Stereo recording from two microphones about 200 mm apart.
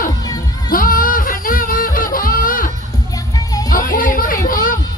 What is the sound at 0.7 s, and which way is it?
Music, 45° left (ahead or behind).